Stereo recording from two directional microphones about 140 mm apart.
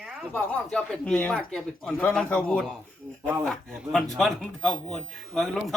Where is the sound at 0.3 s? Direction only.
5° left (ahead or behind).